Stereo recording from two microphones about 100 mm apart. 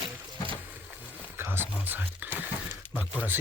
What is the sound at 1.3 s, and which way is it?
Speech, 25° right (ahead or behind).